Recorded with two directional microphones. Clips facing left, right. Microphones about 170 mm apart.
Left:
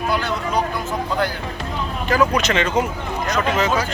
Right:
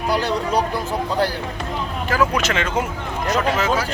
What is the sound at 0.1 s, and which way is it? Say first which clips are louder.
Speech: right 4 dB; 35° right (ahead or behind).